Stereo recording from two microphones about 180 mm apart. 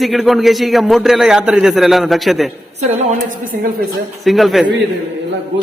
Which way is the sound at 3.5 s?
50° right (ahead or behind).